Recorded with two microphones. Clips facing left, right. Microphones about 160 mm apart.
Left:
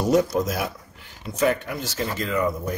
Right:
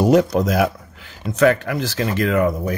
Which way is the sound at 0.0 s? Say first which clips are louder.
Right 5 dB; 70° right (ahead or behind).